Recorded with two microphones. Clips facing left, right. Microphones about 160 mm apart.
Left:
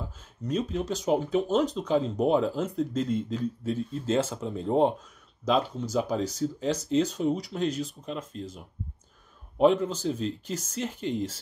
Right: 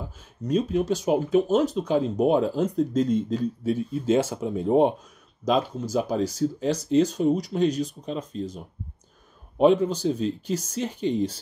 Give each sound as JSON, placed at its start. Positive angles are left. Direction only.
{"t": 0.5, "sound": "speech", "side_deg": -10}